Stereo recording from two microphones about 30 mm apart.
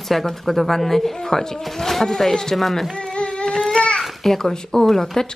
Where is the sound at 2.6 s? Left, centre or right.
Centre.